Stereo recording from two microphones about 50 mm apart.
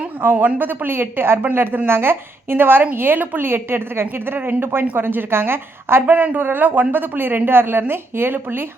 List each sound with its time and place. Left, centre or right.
0.2 s a woman's voice: right
6.1 s a woman's voice: right